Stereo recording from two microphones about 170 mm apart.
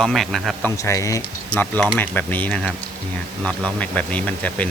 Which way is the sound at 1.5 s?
5° left (ahead or behind).